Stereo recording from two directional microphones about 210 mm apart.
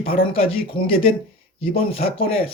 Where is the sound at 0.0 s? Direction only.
45° left (ahead or behind).